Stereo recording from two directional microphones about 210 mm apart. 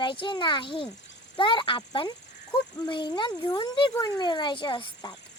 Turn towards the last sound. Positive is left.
turn(degrees=20)  # may be behind; listen again after turning